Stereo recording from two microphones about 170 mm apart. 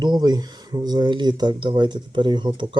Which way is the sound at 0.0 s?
25° right (ahead or behind).